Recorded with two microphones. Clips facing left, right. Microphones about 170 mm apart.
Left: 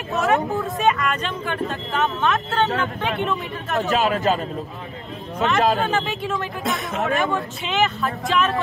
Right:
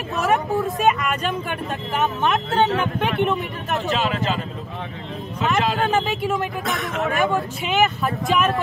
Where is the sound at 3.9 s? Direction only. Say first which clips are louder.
Left 3 dB; 45° left (ahead or behind).